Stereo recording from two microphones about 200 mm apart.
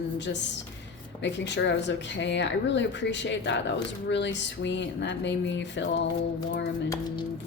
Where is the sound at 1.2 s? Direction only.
60° left (ahead or behind).